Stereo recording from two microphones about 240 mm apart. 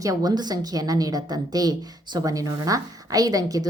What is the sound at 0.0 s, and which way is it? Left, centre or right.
Speech, centre.